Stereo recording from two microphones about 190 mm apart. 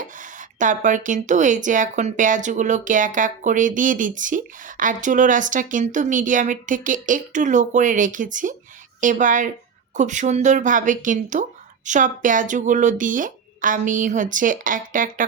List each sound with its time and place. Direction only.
0.0 s a woman's voice: 45° right (ahead or behind)